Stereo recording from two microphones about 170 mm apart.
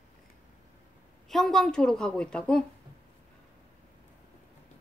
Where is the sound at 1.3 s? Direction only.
Centre (ahead or behind).